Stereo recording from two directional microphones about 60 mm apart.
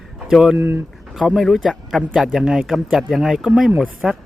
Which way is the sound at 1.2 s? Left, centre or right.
Centre.